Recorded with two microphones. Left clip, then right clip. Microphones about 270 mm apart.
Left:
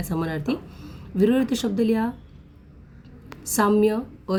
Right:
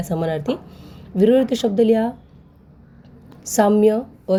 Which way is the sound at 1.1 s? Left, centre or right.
Centre.